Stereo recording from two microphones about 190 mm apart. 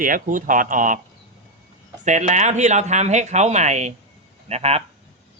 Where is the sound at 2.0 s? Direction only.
40° right (ahead or behind).